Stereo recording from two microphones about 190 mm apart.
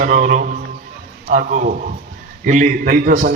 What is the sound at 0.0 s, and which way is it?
A man's voice, 45° right (ahead or behind).